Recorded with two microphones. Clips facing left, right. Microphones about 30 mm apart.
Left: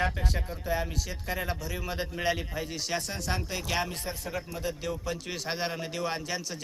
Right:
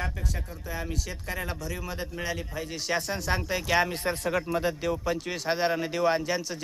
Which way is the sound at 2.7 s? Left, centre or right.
Centre.